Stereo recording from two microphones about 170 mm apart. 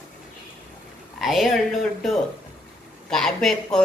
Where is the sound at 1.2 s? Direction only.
Centre (ahead or behind).